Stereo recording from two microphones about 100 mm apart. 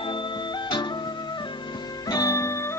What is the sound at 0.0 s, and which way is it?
Music, 55° left (ahead or behind).